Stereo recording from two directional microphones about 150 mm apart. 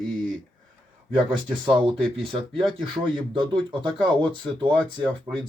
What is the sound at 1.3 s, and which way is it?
Speech, 30° right (ahead or behind).